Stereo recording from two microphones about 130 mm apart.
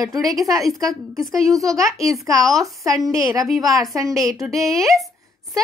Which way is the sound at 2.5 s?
Centre (ahead or behind).